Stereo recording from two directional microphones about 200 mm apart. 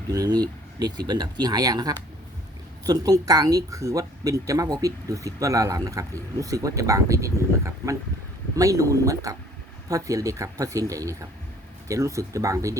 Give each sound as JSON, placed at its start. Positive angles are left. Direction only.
{"t": 0.1, "sound": "speech", "side_deg": -20}